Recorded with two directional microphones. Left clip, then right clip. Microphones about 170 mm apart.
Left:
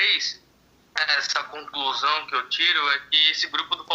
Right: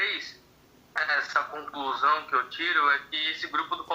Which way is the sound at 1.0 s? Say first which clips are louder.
Left 3 dB; 30° left (ahead or behind).